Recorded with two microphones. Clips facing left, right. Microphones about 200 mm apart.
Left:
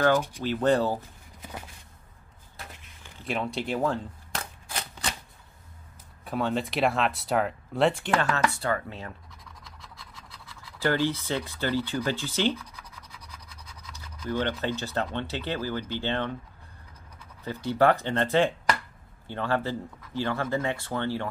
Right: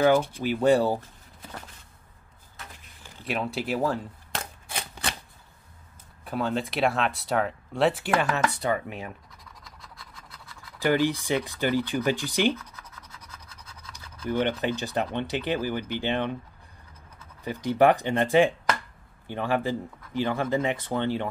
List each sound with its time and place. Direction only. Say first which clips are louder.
0.4 s speech: right 2 dB; 10° right (ahead or behind)
3.3 s speech: right 1 dB; 5° right (ahead or behind)
6.2 s speech: even; centre (ahead or behind)
8.5 s speech: right 2 dB; 15° right (ahead or behind)
10.8 s speech: right 2 dB; 15° right (ahead or behind)
13.9 s speech: right 3 dB; 15° right (ahead or behind)
17.4 s speech: right 2 dB; 15° right (ahead or behind)